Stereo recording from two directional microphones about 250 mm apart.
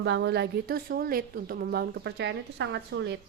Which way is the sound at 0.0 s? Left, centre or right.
Right.